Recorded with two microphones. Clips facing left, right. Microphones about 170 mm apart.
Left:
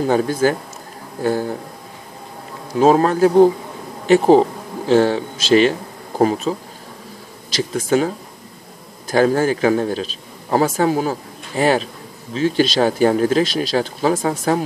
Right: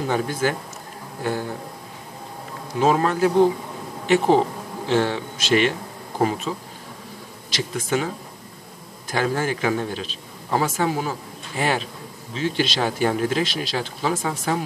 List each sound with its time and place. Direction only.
0.0 s speech: 40° left (ahead or behind)
2.8 s speech: 40° left (ahead or behind)
7.5 s speech: 40° left (ahead or behind)
9.1 s a man's voice: 40° left (ahead or behind)